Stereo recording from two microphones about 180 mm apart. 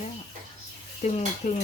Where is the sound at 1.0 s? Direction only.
40° left (ahead or behind).